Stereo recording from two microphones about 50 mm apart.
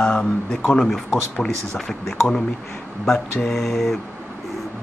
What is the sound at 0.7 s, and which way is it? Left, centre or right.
Speech, centre.